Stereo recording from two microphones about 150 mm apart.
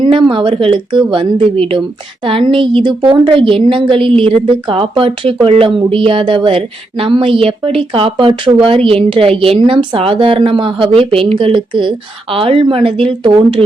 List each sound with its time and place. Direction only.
0.0 s a woman's voice: 35° right (ahead or behind)